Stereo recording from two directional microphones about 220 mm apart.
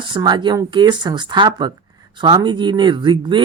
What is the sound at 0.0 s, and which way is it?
Speech, 20° right (ahead or behind).